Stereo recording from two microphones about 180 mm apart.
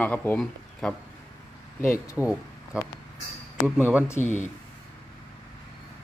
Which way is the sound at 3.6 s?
10° right (ahead or behind).